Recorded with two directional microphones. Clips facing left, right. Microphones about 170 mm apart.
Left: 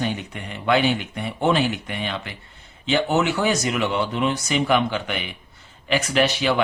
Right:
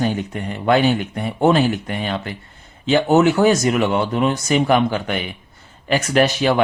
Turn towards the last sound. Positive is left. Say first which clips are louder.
# right 4 dB
turn(degrees=-45)  # may be behind; listen again after turning